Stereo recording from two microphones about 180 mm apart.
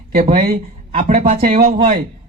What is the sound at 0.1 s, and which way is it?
Speech, 50° right (ahead or behind).